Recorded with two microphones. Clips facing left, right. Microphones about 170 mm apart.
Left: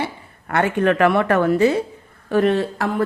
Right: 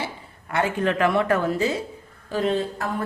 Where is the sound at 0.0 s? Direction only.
60° left (ahead or behind).